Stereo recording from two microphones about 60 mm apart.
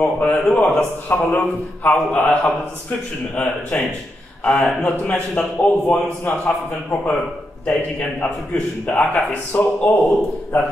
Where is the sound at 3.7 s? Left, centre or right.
Left.